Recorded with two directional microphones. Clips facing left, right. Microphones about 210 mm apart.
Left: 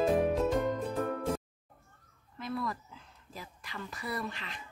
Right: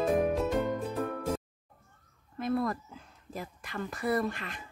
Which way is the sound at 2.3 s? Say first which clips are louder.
Right 6 dB; 50° right (ahead or behind).